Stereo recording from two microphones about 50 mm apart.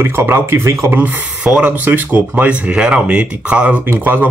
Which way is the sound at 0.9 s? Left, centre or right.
Right.